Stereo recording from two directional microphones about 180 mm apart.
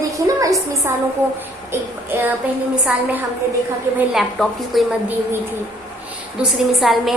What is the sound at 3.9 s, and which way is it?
A woman's voice, centre (ahead or behind).